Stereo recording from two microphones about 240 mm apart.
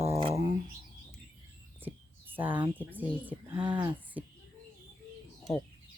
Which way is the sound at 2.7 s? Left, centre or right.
Centre.